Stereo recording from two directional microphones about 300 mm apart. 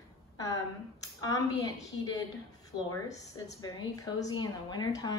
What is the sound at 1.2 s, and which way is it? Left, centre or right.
Speech, centre.